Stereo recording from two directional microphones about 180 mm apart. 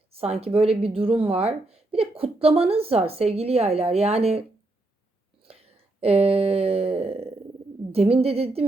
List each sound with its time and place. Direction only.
0.1 s speech: 35° right (ahead or behind)
5.5 s a sound: 35° right (ahead or behind)
7.9 s speech: 35° right (ahead or behind)